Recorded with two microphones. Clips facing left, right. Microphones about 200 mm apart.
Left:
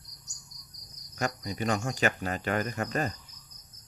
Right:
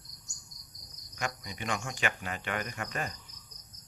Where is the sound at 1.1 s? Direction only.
40° left (ahead or behind).